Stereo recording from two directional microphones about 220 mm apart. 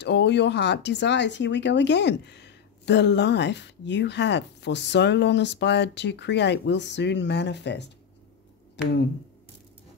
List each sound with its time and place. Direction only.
0.0 s speech: 50° left (ahead or behind)